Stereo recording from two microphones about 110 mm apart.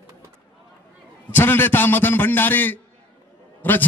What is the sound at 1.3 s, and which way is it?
A man's voice, 20° left (ahead or behind).